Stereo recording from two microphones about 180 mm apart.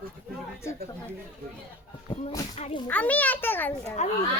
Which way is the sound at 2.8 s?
10° left (ahead or behind).